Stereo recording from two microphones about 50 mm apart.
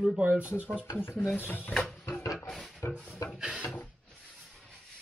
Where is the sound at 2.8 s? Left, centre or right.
Left.